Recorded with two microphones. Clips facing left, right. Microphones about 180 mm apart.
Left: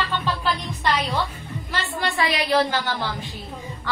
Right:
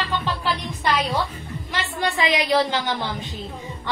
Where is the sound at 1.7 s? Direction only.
20° right (ahead or behind).